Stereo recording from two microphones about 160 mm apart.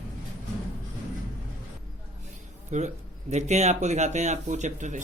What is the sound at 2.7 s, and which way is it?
A man's voice, 45° right (ahead or behind).